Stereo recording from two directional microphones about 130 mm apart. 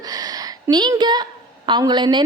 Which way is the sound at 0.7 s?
35° right (ahead or behind).